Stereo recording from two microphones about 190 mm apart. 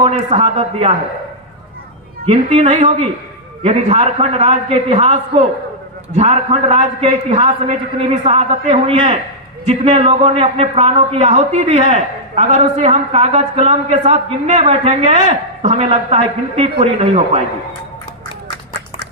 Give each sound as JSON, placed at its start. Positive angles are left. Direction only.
{"t": 0.0, "sound": "a woman's voice", "side_deg": -35}
{"t": 2.2, "sound": "a woman's voice", "side_deg": -30}
{"t": 6.1, "sound": "a woman's voice", "side_deg": -35}